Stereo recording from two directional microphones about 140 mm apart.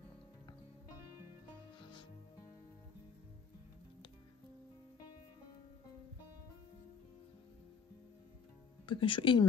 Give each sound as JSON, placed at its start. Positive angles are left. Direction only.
{"t": 1.9, "sound": "music", "side_deg": 30}
{"t": 8.8, "sound": "speech", "side_deg": 35}